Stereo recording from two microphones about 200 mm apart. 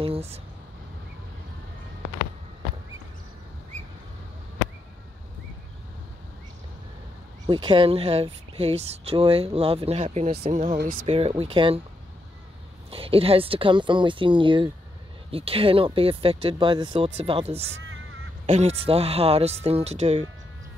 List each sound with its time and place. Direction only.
0.0 s a sound: 30° right (ahead or behind)
7.4 s speech: 25° right (ahead or behind)
10.8 s speech: 45° right (ahead or behind)
11.1 s speech: 30° right (ahead or behind)
12.9 s speech: 30° right (ahead or behind)